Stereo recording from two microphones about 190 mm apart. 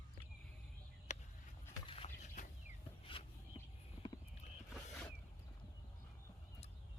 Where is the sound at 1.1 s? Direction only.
40° left (ahead or behind).